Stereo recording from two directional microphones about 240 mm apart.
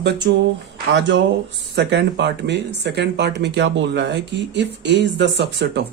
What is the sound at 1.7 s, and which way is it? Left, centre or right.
Speech, right.